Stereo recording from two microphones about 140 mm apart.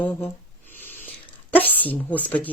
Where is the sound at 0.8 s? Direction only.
15° left (ahead or behind).